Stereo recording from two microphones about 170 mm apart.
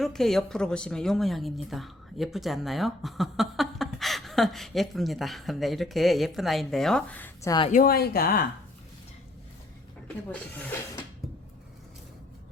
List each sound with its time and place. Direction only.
0.0 s a woman's voice: centre (ahead or behind)
7.7 s speech: 60° left (ahead or behind)